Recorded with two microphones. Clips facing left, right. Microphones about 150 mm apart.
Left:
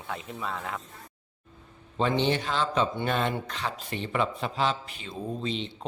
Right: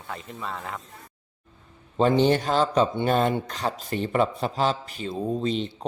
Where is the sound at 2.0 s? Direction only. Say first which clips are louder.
Right 6 dB; 40° right (ahead or behind).